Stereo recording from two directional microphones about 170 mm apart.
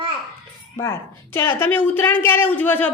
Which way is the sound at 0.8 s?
15° left (ahead or behind).